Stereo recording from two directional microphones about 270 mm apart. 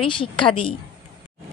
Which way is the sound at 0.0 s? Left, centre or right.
Centre.